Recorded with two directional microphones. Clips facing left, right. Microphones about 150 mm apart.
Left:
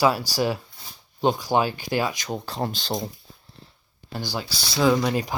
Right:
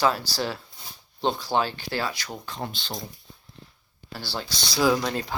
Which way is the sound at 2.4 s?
40° left (ahead or behind).